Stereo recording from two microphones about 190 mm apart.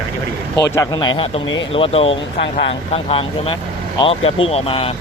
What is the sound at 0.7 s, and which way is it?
A man's voice, 20° left (ahead or behind).